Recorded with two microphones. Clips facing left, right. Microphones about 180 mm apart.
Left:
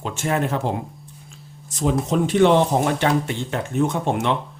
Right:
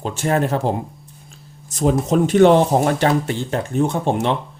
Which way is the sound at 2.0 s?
45° right (ahead or behind).